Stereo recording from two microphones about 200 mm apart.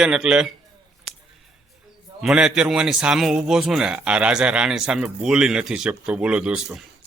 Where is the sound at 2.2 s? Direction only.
5° right (ahead or behind).